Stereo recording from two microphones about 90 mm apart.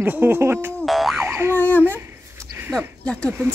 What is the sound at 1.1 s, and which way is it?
Boing, 25° right (ahead or behind).